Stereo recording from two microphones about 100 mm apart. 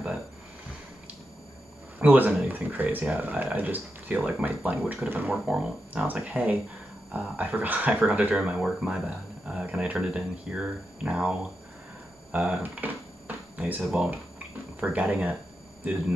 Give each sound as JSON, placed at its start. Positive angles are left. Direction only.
{"t": 2.0, "sound": "speech", "side_deg": -15}
{"t": 12.6, "sound": "a sound", "side_deg": -15}
{"t": 14.8, "sound": "speech", "side_deg": -10}